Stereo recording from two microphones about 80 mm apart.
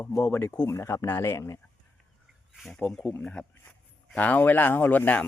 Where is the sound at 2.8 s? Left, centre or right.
Centre.